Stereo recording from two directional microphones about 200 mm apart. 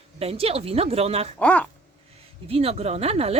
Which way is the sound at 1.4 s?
5° left (ahead or behind).